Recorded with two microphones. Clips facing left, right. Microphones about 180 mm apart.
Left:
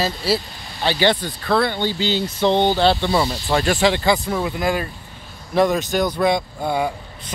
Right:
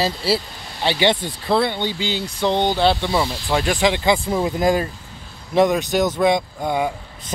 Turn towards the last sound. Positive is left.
turn(degrees=-10)  # may be behind; listen again after turning